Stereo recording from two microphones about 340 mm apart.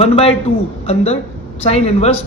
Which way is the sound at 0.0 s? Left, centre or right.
Centre.